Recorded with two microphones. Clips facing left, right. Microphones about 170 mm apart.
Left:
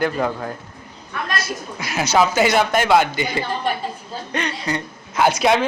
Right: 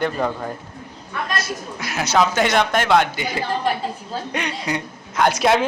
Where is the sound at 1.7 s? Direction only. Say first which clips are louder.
Left 1 dB; centre (ahead or behind).